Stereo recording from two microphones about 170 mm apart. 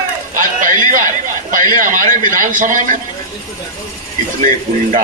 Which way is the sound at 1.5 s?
50° right (ahead or behind).